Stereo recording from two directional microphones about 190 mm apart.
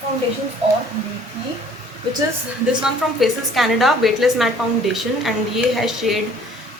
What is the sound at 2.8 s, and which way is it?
A woman's voice, centre (ahead or behind).